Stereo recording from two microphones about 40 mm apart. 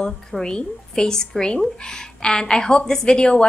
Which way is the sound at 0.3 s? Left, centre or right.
Centre.